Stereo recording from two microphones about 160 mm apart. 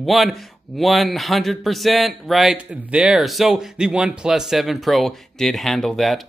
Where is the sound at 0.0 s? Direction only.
Centre (ahead or behind).